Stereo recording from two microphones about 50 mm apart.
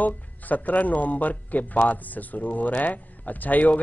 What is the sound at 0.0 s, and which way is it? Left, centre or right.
Speech, left.